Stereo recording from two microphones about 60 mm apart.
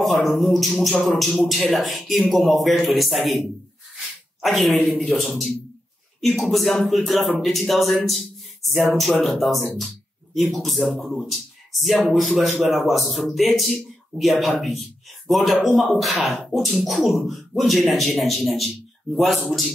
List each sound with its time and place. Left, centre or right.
0.0 s speech: centre